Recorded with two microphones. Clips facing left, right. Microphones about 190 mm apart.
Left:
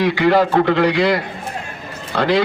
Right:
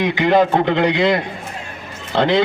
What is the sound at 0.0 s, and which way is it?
A man's voice, 20° right (ahead or behind).